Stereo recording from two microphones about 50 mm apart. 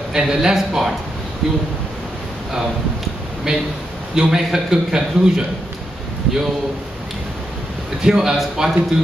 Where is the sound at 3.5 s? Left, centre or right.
Centre.